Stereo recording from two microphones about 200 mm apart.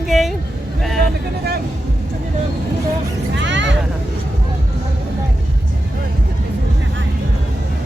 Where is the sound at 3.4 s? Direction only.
65° right (ahead or behind).